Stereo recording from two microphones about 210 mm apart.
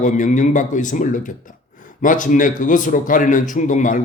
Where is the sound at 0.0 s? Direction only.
35° left (ahead or behind).